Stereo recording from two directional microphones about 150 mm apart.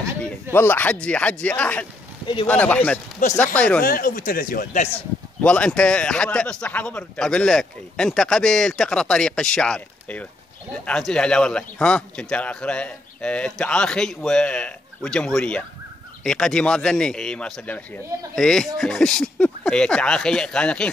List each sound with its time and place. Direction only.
0.5 s speech: 15° left (ahead or behind)
3.2 s speech: 55° left (ahead or behind)
3.5 s speech: 10° left (ahead or behind)
3.8 s speech: 70° left (ahead or behind)
4.8 s speech: 10° left (ahead or behind)